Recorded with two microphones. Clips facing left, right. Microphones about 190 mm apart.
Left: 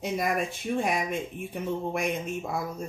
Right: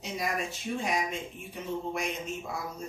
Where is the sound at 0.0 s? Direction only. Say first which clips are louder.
Left 5 dB; 55° left (ahead or behind).